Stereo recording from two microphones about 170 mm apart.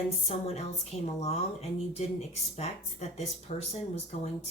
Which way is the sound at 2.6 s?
40° left (ahead or behind).